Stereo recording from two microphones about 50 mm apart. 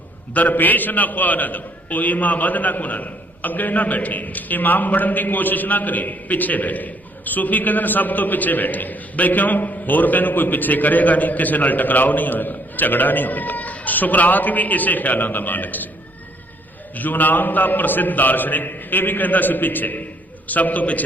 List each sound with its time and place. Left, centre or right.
0.3 s a man's voice: left
16.9 s a man's voice: left